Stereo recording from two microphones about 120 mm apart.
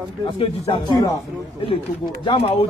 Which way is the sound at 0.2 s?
45° left (ahead or behind).